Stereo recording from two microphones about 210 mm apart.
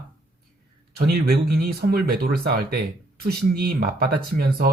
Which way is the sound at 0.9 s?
45° right (ahead or behind).